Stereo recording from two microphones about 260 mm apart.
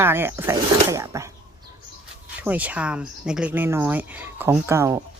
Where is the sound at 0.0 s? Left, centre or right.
Centre.